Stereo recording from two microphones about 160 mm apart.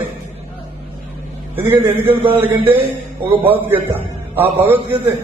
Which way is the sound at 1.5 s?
15° right (ahead or behind).